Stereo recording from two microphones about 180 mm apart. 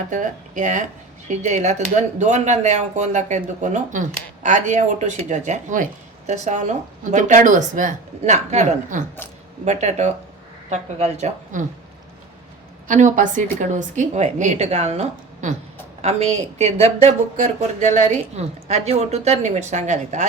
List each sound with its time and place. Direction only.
0.1 s a woman's voice: 45° right (ahead or behind)
12.9 s a woman's voice: 45° right (ahead or behind)